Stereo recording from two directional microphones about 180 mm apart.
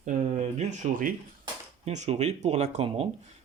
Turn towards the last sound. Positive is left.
turn(degrees=-35)  # may be behind; listen again after turning